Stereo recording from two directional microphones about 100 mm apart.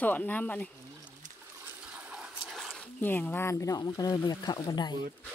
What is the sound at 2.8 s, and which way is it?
Speech, 20° left (ahead or behind).